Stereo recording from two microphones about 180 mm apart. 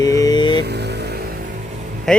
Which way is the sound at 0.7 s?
65° right (ahead or behind).